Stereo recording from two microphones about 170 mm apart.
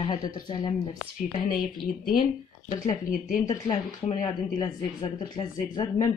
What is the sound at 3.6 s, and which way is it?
Speech, 35° left (ahead or behind).